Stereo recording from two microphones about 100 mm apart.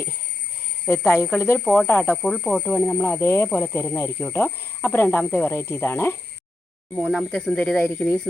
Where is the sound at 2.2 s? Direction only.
5° left (ahead or behind).